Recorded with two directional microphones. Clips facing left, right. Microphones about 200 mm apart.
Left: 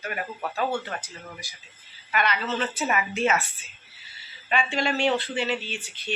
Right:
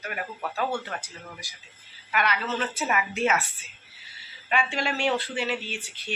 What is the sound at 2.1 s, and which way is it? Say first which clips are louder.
A woman's voice: left 1 dB; 10° right (ahead or behind).